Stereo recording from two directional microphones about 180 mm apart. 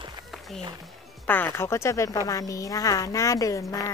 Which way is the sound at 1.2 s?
10° left (ahead or behind).